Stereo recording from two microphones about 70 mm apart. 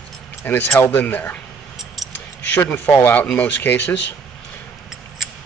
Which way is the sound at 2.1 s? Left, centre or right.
Left.